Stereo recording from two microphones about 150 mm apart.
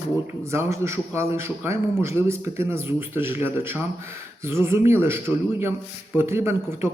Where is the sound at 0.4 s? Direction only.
20° right (ahead or behind).